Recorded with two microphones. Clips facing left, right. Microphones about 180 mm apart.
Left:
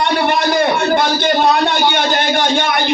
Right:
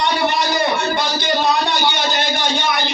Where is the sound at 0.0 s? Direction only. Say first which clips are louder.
Left 3 dB; 55° left (ahead or behind).